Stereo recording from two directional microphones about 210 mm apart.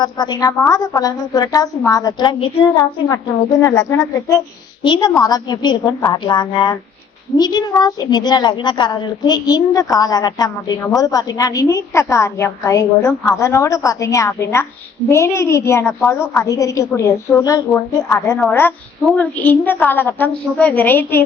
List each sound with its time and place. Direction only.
0.0 s a woman's voice: 20° left (ahead or behind)